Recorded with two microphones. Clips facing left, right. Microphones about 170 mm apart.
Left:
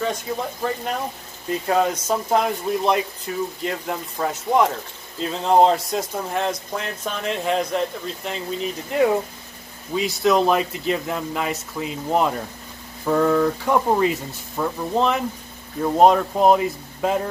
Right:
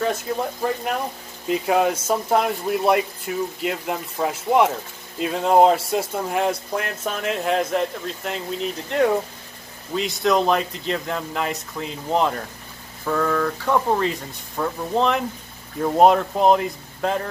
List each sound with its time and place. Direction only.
0.0 s speech: 5° right (ahead or behind)
13.0 s speech: 20° left (ahead or behind)